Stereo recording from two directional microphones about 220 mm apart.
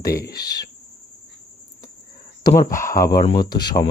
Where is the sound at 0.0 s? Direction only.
45° left (ahead or behind).